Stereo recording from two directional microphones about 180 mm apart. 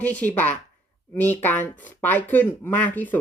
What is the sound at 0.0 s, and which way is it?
Speech, 10° left (ahead or behind).